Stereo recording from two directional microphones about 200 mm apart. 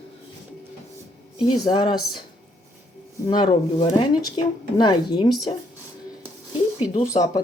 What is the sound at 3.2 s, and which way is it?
Speech, 20° left (ahead or behind).